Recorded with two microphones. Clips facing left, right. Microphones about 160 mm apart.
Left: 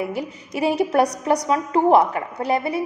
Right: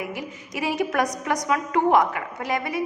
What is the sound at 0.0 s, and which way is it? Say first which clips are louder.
A woman's voice: left 5 dB; 35° left (ahead or behind).